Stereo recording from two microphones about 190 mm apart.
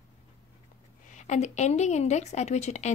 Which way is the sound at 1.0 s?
40° left (ahead or behind).